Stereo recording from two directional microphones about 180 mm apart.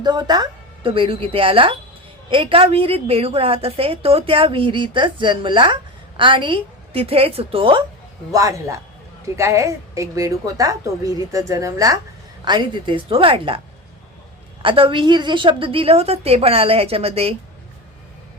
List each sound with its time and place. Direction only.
0.0 s a woman's voice: 25° right (ahead or behind)
8.3 s a woman's voice: 20° right (ahead or behind)
14.6 s a woman's voice: 30° right (ahead or behind)